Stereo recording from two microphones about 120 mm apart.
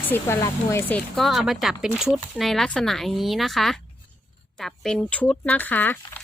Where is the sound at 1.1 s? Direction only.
Centre (ahead or behind).